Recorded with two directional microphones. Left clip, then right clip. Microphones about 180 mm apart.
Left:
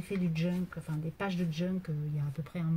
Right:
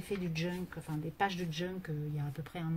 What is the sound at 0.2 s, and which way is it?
Speech, 35° right (ahead or behind).